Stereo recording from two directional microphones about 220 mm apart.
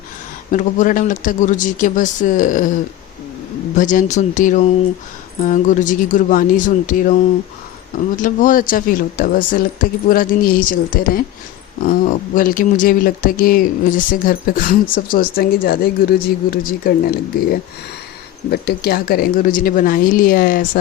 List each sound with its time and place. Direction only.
0.5 s speech: 35° left (ahead or behind)
3.8 s speech: 35° left (ahead or behind)